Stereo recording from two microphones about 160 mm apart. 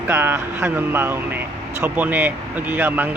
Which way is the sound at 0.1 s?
15° right (ahead or behind).